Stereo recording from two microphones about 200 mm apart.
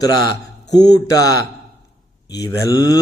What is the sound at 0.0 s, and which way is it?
A man's voice, 20° left (ahead or behind).